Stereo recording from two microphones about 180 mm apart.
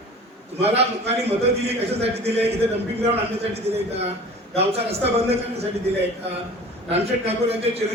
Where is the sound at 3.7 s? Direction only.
35° right (ahead or behind).